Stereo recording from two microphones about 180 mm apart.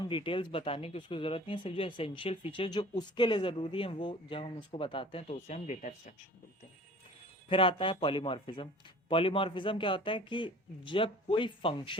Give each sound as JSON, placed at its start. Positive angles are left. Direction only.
{"t": 0.0, "sound": "speech", "side_deg": 30}
{"t": 7.5, "sound": "speech", "side_deg": 30}